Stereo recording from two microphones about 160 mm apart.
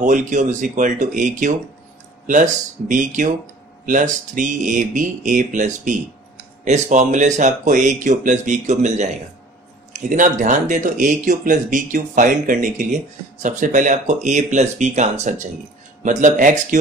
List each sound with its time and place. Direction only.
0.0 s speech: 50° right (ahead or behind)